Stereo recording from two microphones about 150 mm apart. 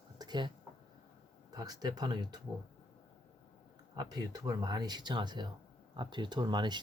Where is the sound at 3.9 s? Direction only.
25° right (ahead or behind).